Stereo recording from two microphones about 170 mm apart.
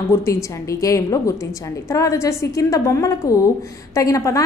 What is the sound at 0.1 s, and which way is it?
A woman's voice, 15° left (ahead or behind).